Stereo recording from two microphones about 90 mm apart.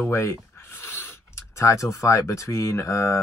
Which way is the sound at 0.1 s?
30° left (ahead or behind).